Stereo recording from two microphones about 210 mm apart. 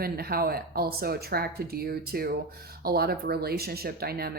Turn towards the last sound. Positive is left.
turn(degrees=-50)  # may be behind; listen again after turning